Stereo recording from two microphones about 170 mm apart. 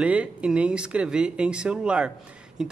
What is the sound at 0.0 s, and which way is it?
A man's voice, 5° right (ahead or behind).